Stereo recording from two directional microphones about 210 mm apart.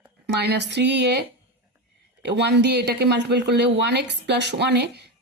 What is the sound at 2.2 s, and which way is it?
Speech, 55° right (ahead or behind).